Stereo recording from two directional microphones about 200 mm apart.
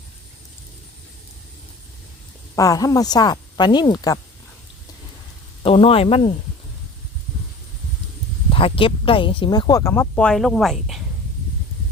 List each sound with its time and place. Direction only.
2.6 s speech: 15° left (ahead or behind)
5.6 s speech: 30° left (ahead or behind)
8.4 s speech: 25° left (ahead or behind); by 11.0 s centre (ahead or behind)